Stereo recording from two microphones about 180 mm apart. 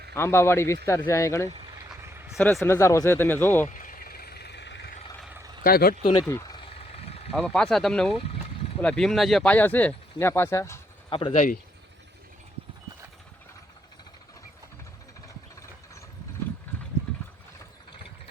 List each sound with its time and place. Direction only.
0.1 s speech: 15° left (ahead or behind)
2.1 s a sound: 5° right (ahead or behind)
2.4 s speech: 15° left (ahead or behind)
3.7 s vehicle: 45° left (ahead or behind); by 4.9 s 75° left (ahead or behind)
5.6 s speech: 55° left (ahead or behind)
6.2 s speech: 15° left (ahead or behind)
6.7 s a sound: 35° left (ahead or behind)
7.3 s speech: 5° left (ahead or behind)
11.1 s speech: 30° left (ahead or behind)
15.3 s mechanisms: 15° left (ahead or behind)